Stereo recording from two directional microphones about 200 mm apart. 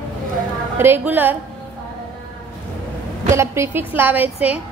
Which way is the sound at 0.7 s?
10° right (ahead or behind).